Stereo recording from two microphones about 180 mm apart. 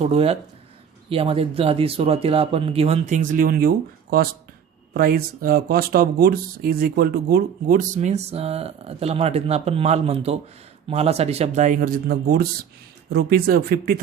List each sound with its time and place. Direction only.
0.0 s speech: 35° right (ahead or behind); by 14.0 s 55° right (ahead or behind)